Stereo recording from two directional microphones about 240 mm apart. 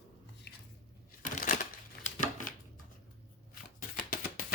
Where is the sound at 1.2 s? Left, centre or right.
Left.